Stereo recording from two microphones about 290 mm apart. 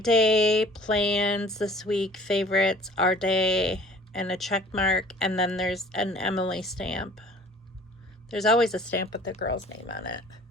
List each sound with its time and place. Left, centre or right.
0.0 s speech: centre
8.3 s speech: centre
9.6 s speech: left